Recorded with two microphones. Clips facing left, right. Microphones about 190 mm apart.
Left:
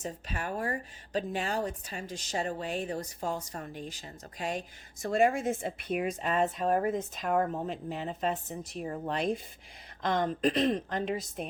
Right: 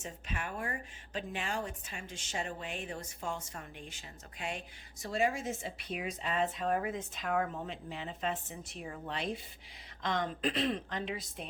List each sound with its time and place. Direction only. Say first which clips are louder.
0.0 s speech: left 5 dB; 40° left (ahead or behind)
5.0 s a woman's voice: left 6 dB; 50° left (ahead or behind)